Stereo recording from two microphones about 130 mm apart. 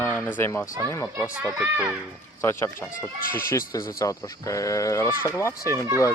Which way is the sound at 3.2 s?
90° left.